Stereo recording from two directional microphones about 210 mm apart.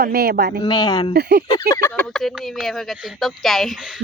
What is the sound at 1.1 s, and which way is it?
Speech, 50° right (ahead or behind).